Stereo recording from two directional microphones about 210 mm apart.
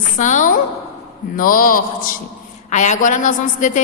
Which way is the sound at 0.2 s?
35° left (ahead or behind).